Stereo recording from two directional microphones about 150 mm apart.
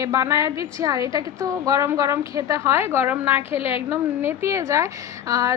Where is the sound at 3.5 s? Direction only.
40° left (ahead or behind).